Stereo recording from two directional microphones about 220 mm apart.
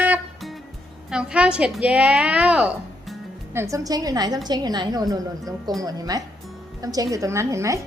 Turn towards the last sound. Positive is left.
turn(degrees=-15)  # may be behind; listen again after turning